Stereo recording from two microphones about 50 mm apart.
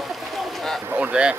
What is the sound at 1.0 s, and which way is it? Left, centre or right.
Speech, centre.